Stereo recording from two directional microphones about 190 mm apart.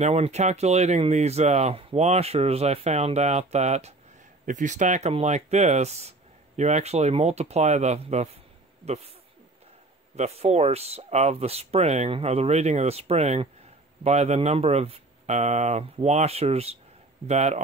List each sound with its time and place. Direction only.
0.0 s speech: 35° right (ahead or behind)
10.1 s speech: 35° right (ahead or behind)